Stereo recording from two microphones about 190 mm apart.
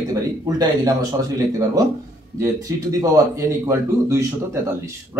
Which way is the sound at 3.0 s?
15° right (ahead or behind).